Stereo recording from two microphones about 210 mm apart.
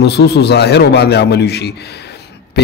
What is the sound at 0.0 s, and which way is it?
A man's voice, 50° left (ahead or behind).